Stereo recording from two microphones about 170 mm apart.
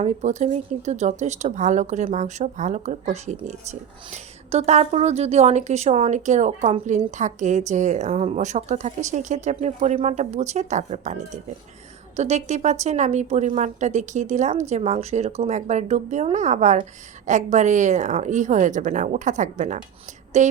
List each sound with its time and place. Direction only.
0.0 s a woman's voice: 45° right (ahead or behind)